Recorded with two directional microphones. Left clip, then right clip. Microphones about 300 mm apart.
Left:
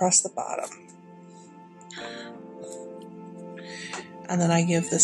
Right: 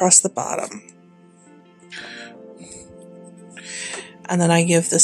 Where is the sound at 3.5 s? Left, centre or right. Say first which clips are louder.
Right 6 dB; right.